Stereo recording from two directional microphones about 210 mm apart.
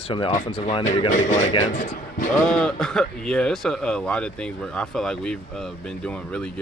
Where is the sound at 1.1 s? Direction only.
35° left (ahead or behind).